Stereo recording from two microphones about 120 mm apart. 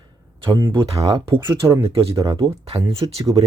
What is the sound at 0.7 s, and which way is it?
Speech, 45° right (ahead or behind).